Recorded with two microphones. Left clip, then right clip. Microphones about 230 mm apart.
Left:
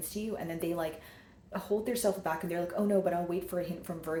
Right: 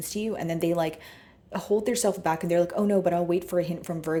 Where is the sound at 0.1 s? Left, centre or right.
Right.